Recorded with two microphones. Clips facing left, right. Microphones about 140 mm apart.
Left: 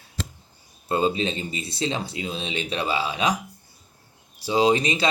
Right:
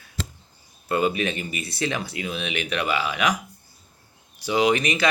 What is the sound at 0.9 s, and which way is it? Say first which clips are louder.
Speech: even; 25° left (ahead or behind).